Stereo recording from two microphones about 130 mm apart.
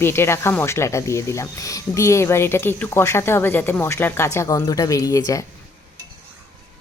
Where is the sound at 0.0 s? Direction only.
20° left (ahead or behind).